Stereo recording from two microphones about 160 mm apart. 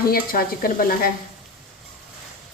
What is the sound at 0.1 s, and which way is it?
Speech, 65° left (ahead or behind).